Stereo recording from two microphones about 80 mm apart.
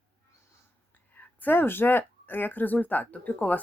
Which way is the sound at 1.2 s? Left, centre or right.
Left.